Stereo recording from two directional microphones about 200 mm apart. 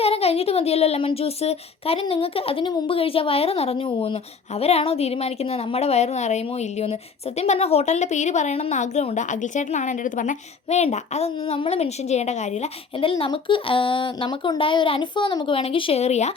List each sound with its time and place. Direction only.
0.0 s speech: 30° left (ahead or behind)